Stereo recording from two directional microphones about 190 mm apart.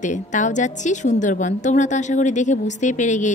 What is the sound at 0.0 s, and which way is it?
A woman's voice, 40° left (ahead or behind).